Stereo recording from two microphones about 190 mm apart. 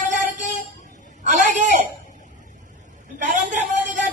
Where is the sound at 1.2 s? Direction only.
40° right (ahead or behind).